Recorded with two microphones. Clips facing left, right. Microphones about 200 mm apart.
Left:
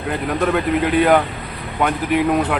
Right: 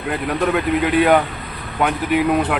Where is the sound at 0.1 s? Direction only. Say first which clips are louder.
Even; centre (ahead or behind).